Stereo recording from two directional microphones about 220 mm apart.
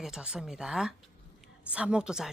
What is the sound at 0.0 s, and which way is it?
A woman's voice, 5° right (ahead or behind).